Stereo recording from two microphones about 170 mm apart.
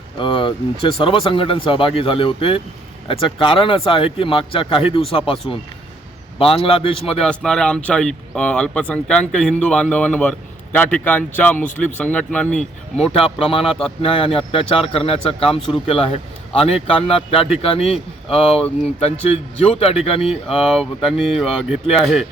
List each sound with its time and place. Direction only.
0.2 s speech: 30° left (ahead or behind)
6.4 s speech: 35° left (ahead or behind)
7.2 s speech: 5° left (ahead or behind)
13.1 s speech: 35° left (ahead or behind)
20.7 s speech: centre (ahead or behind)